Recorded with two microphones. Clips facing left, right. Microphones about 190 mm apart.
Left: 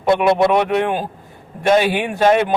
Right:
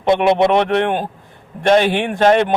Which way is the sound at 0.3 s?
25° right (ahead or behind).